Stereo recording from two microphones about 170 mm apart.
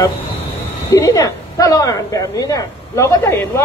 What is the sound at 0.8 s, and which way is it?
A woman's voice, 20° left (ahead or behind).